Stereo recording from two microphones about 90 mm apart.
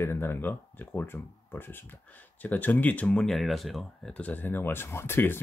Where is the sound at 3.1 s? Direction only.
5° left (ahead or behind).